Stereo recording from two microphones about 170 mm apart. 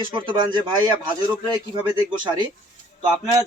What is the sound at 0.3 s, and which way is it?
Speech, 25° right (ahead or behind).